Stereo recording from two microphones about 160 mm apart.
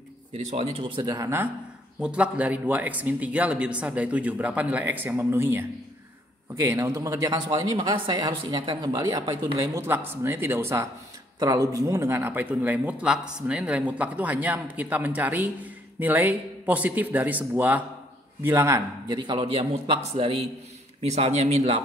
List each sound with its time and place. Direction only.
0.3 s speech: 40° right (ahead or behind); by 1.5 s 15° right (ahead or behind)
2.0 s a man's voice: 5° right (ahead or behind); by 9.7 s 30° right (ahead or behind)
9.8 s a man's voice: 15° right (ahead or behind); by 20.0 s 35° right (ahead or behind)
21.0 s speech: 40° right (ahead or behind)